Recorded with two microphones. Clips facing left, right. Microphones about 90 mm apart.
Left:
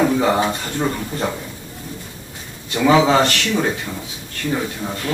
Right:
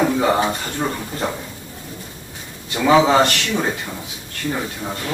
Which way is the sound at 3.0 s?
15° right (ahead or behind).